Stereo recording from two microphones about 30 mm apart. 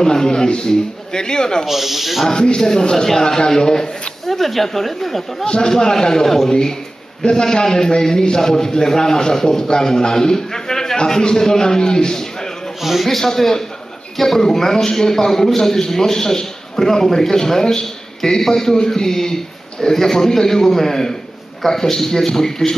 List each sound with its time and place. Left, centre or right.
0.0 s a man's voice: left
1.7 s speech: centre
2.2 s a man's voice: left
4.3 s speech: centre
5.4 s a man's voice: left
7.4 s a man's voice: left
12.8 s a man's voice: centre
13.1 s a man's voice: centre